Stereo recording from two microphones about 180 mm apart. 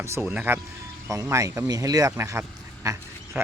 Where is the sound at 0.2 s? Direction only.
10° right (ahead or behind).